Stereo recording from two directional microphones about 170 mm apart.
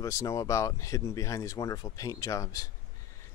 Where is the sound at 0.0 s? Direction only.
20° left (ahead or behind).